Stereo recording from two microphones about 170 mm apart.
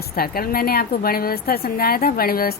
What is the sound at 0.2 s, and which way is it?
A woman's voice, 60° left (ahead or behind).